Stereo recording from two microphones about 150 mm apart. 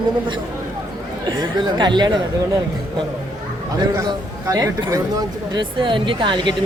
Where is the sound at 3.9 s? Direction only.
20° right (ahead or behind).